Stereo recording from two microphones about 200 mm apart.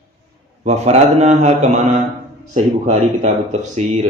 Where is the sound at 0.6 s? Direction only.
30° right (ahead or behind).